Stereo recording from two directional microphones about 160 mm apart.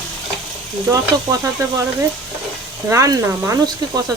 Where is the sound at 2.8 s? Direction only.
20° right (ahead or behind).